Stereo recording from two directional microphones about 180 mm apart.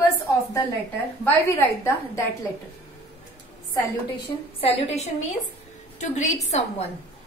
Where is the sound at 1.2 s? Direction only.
15° left (ahead or behind).